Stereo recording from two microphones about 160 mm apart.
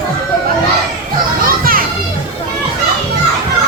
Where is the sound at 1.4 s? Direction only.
65° right (ahead or behind).